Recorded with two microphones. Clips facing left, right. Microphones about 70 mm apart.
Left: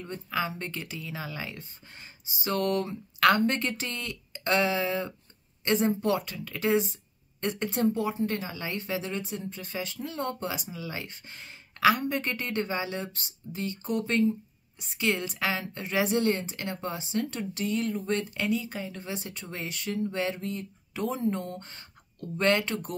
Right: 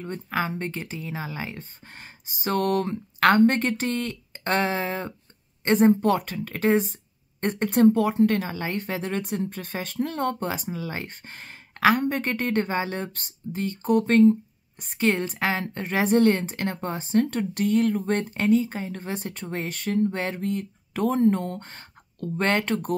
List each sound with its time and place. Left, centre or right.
0.0 s speech: right
1.9 s speech: right